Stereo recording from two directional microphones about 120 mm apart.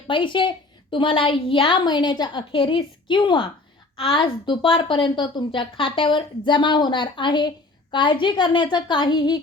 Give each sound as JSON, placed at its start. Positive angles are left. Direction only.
{"t": 0.1, "sound": "a woman's voice", "side_deg": 45}